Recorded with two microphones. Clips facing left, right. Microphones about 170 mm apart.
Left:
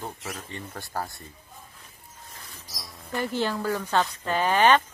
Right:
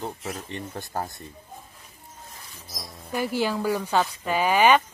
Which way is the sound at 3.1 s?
10° right (ahead or behind).